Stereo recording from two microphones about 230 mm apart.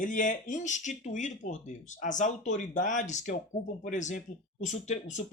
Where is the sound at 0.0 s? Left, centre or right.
Left.